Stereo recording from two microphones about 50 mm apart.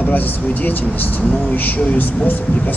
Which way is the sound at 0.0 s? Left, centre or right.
Left.